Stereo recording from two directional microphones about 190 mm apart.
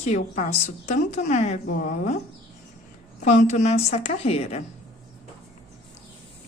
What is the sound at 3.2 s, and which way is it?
Speech, 40° left (ahead or behind).